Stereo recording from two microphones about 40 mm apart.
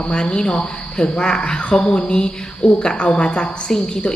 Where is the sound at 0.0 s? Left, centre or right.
Left.